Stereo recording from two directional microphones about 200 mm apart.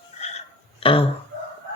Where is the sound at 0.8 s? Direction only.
25° left (ahead or behind).